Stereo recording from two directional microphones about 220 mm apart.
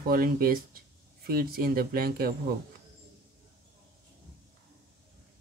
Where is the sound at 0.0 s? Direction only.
40° right (ahead or behind).